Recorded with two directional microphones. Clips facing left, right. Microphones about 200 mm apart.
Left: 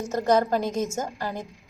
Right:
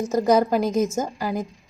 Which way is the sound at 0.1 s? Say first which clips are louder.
Right 3 dB; 10° right (ahead or behind).